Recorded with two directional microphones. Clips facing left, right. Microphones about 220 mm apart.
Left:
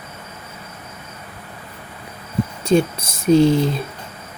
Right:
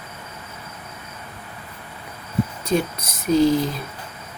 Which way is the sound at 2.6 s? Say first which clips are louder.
Left 9 dB; 30° left (ahead or behind).